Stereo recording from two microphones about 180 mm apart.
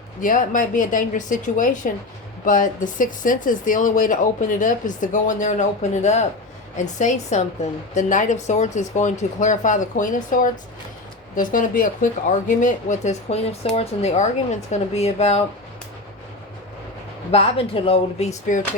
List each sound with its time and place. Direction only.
0.2 s speech: 45° left (ahead or behind)
17.3 s speech: 35° left (ahead or behind)
18.5 s speech: 45° left (ahead or behind)